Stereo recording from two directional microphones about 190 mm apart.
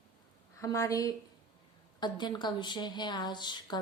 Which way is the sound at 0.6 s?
15° left (ahead or behind).